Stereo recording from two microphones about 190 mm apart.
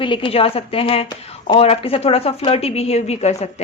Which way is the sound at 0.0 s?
25° left (ahead or behind).